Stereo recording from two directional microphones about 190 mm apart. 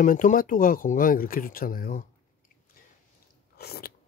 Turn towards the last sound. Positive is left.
turn(degrees=55)  # may be behind; listen again after turning